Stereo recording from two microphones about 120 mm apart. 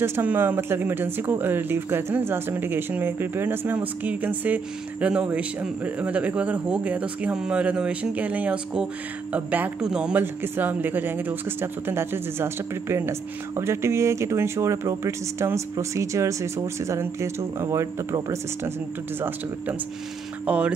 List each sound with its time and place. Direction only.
0.0 s speech: 15° right (ahead or behind)
10.2 s speech: 20° right (ahead or behind)
20.4 s speech: 10° right (ahead or behind)